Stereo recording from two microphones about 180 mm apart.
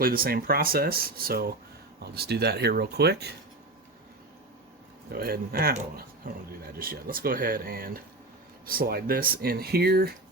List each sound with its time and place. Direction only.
0.0 s speech: 55° right (ahead or behind)
5.1 s speech: 55° right (ahead or behind)